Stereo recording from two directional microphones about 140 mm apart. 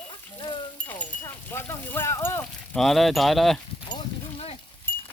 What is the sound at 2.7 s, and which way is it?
Speech, centre (ahead or behind).